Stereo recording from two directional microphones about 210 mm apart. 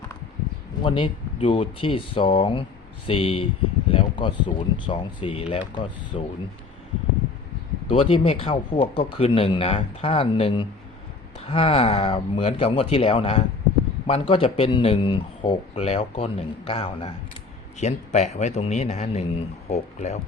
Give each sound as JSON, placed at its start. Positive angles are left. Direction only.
{"t": 0.8, "sound": "speech", "side_deg": 25}
{"t": 3.8, "sound": "a sound", "side_deg": 25}
{"t": 4.4, "sound": "speech", "side_deg": 25}
{"t": 7.9, "sound": "speech", "side_deg": 25}